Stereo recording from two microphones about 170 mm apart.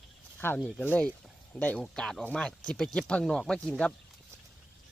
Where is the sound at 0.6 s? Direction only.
5° left (ahead or behind).